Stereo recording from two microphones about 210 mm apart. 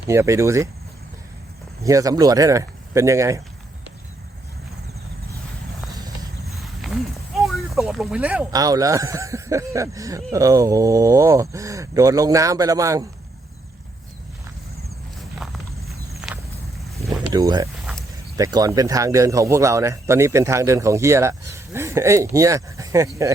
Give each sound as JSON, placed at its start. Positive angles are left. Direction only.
{"t": 0.1, "sound": "speech", "side_deg": -15}
{"t": 1.8, "sound": "speech", "side_deg": -15}
{"t": 6.6, "sound": "clip-clop", "side_deg": 0}
{"t": 8.5, "sound": "speech", "side_deg": -15}
{"t": 15.4, "sound": "walk", "side_deg": 0}
{"t": 17.3, "sound": "speech", "side_deg": -15}